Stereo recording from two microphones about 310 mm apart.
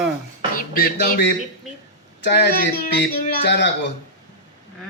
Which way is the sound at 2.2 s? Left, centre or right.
Left.